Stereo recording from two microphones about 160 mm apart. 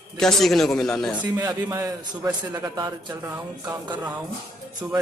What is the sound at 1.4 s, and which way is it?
A man's voice, 20° right (ahead or behind).